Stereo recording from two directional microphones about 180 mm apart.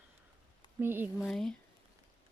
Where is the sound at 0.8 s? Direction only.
10° right (ahead or behind).